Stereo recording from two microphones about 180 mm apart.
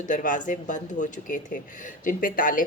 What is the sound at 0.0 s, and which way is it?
Speech, 45° left (ahead or behind).